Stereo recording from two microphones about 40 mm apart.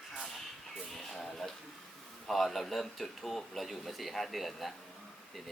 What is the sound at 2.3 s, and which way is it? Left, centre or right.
Speech, centre.